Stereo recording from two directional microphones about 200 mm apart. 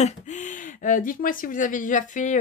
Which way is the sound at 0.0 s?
35° left (ahead or behind).